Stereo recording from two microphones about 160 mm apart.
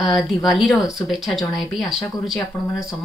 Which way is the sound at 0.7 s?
20° left (ahead or behind).